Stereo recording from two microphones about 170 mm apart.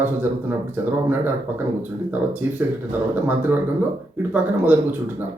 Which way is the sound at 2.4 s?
10° right (ahead or behind).